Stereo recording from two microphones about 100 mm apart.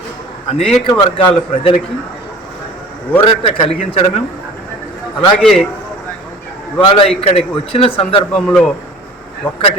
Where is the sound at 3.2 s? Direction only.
65° left (ahead or behind).